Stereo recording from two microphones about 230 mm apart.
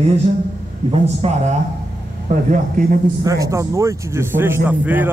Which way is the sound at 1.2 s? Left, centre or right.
Right.